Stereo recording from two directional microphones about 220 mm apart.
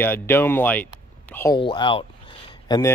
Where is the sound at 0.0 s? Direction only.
10° left (ahead or behind).